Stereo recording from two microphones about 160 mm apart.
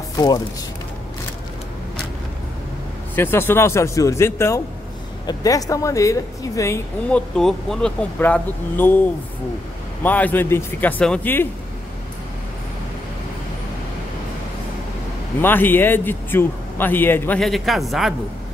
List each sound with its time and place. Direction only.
0.2 s speech: 25° left (ahead or behind)
3.2 s a man's voice: 15° left (ahead or behind)
7.1 s a man's voice: 5° left (ahead or behind)
10.0 s a man's voice: 10° left (ahead or behind)
15.4 s a man's voice: 15° left (ahead or behind)
17.4 s speech: centre (ahead or behind)